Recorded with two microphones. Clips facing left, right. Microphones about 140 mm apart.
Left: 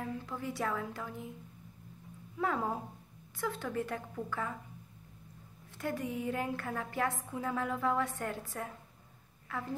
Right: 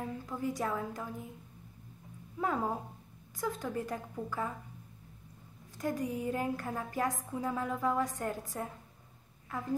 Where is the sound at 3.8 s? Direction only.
15° right (ahead or behind).